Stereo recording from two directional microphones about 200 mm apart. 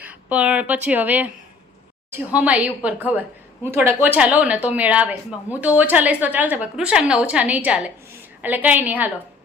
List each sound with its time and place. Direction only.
0.0 s a woman's voice: 5° right (ahead or behind)